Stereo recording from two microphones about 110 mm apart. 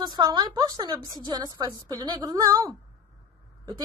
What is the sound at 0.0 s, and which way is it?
A woman's voice, 40° right (ahead or behind).